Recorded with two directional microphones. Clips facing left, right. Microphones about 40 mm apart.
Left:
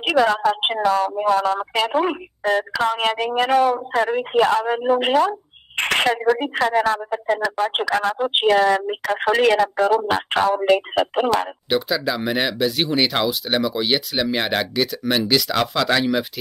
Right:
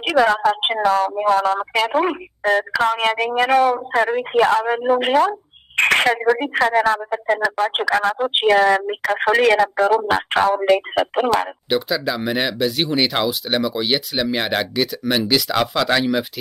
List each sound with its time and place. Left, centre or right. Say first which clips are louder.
0.3 s a woman's voice: right 2 dB; right
5.8 s a sound: right 3 dB; right
6.4 s a woman's voice: right 2 dB; right
9.6 s speech: right 1 dB; right
10.0 s a woman's voice: right 2 dB; right
11.7 s speech: even; centre